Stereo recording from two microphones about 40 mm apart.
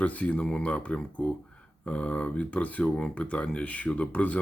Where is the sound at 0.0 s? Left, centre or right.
Left.